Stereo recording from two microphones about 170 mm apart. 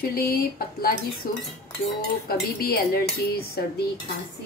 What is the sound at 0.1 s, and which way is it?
A woman's voice, 65° left (ahead or behind).